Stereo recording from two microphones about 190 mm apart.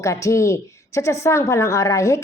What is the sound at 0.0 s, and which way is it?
A woman's voice, 15° left (ahead or behind).